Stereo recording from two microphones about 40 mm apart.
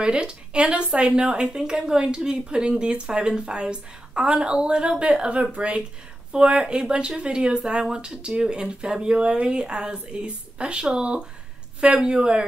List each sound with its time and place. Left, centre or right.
0.0 s a woman's voice: right